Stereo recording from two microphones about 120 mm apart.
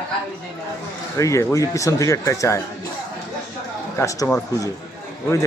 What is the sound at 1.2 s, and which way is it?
Speech, 25° left (ahead or behind).